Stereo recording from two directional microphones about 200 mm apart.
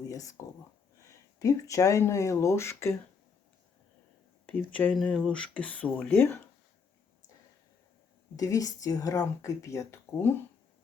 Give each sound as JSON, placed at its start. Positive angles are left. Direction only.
{"t": 0.1, "sound": "speech", "side_deg": 15}
{"t": 4.4, "sound": "speech", "side_deg": 5}
{"t": 8.4, "sound": "speech", "side_deg": 15}